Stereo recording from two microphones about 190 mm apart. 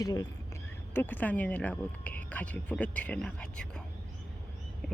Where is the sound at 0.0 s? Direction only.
20° left (ahead or behind).